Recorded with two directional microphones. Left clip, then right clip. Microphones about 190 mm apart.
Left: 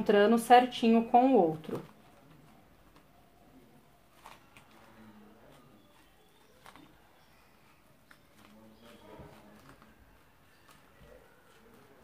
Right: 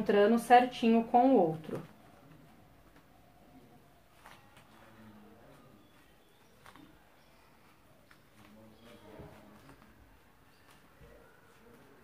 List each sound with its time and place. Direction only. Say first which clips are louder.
0.0 s speech: left 2 dB; 30° left (ahead or behind)